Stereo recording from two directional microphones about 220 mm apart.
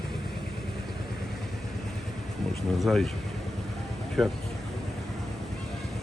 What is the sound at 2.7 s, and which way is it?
Speech, centre (ahead or behind).